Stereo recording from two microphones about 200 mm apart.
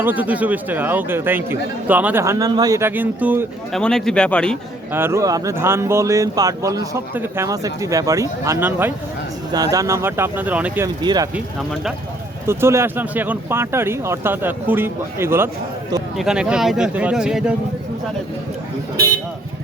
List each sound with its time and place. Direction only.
0.0 s speech: 10° right (ahead or behind)
3.8 s speech: 5° left (ahead or behind)
4.9 s speech: 10° right (ahead or behind)
10.8 s speech: 20° right (ahead or behind)
11.3 s speech: 5° right (ahead or behind)